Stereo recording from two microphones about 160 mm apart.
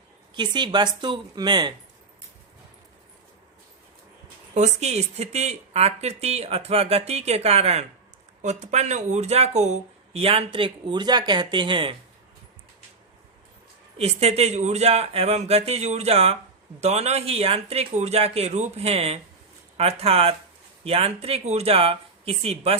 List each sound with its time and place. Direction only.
0.3 s a woman's voice: 30° right (ahead or behind)
4.5 s speech: 45° right (ahead or behind)
14.0 s speech: 40° right (ahead or behind)